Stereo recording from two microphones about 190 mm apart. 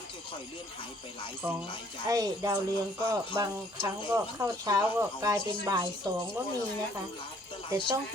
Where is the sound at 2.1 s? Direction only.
20° right (ahead or behind).